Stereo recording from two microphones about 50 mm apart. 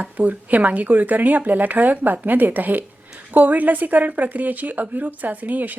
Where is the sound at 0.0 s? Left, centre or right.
Right.